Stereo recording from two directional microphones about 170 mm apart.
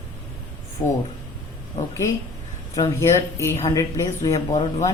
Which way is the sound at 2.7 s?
25° left (ahead or behind).